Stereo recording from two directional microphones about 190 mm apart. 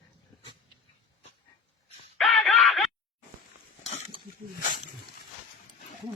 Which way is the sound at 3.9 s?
30° left (ahead or behind).